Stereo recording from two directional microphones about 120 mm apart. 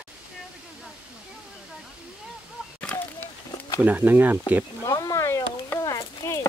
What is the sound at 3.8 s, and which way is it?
Speech, 15° right (ahead or behind).